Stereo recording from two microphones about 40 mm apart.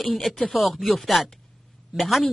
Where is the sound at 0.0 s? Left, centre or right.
Centre.